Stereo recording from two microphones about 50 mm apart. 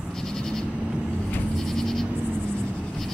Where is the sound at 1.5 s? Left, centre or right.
Centre.